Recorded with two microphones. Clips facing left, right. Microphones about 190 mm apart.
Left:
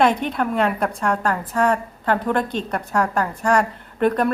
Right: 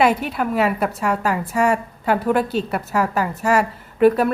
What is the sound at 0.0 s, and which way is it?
A woman's voice, 5° right (ahead or behind).